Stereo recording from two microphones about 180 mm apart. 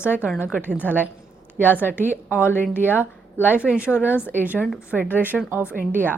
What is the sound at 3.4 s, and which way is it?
A woman's voice, 10° right (ahead or behind).